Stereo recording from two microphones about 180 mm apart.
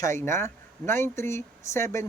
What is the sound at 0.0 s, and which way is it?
Speech, 15° left (ahead or behind).